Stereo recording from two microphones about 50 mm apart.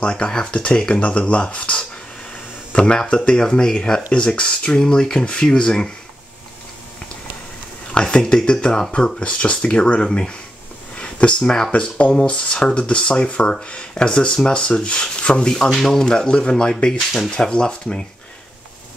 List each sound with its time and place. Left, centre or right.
0.0 s speech: centre
7.9 s speech: centre
11.0 s a sound: left
11.7 s speech: centre